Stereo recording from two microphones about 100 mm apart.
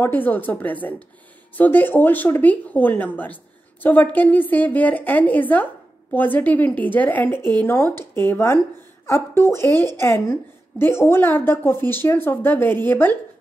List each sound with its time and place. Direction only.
0.0 s a woman's voice: 20° left (ahead or behind)